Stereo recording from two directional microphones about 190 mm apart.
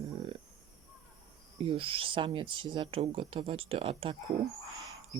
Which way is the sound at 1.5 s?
30° right (ahead or behind).